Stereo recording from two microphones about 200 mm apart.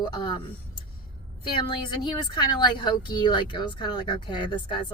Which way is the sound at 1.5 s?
25° left (ahead or behind).